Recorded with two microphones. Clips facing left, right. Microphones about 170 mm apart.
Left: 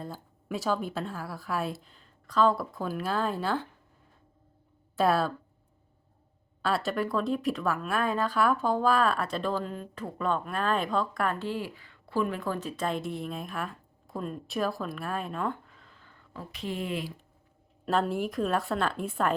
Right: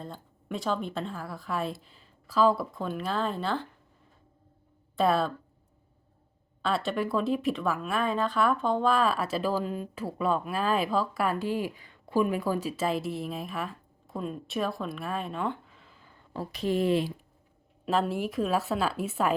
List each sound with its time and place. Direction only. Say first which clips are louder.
0.0 s speech: left 1 dB; 5° left (ahead or behind)
4.9 s speech: even; centre (ahead or behind)
6.6 s speech: even; centre (ahead or behind)
16.3 s speech: right 7 dB; 35° right (ahead or behind)
17.8 s speech: even; centre (ahead or behind)